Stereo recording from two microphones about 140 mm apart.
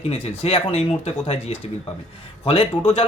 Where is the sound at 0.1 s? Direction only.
45° left (ahead or behind).